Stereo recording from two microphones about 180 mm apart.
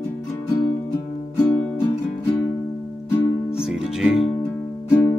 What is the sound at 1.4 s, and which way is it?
Music, 10° left (ahead or behind).